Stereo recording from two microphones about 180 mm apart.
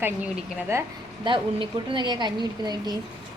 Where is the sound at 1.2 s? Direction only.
25° right (ahead or behind).